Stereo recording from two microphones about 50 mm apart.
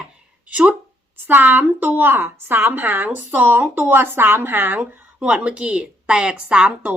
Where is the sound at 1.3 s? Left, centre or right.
Right.